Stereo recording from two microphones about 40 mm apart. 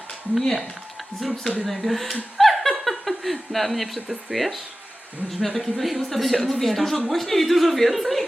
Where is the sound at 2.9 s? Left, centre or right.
Centre.